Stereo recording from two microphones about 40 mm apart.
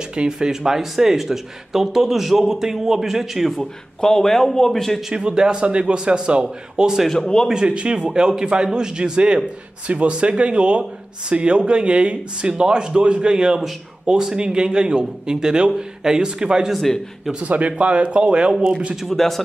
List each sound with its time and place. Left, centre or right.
0.1 s speech: right
0.5 s speech: centre
3.5 s a man's voice: centre
5.1 s speech: right
7.1 s a man's voice: centre
7.6 s speech: right
16.7 s a man's voice: centre
17.5 s speech: right
18.5 s speech: centre
19.0 s a man's voice: centre